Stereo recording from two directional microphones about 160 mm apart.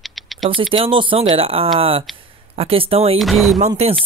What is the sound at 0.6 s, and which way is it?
Speech, 35° right (ahead or behind).